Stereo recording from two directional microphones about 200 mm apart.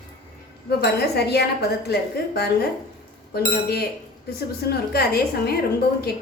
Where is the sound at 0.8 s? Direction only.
55° left (ahead or behind).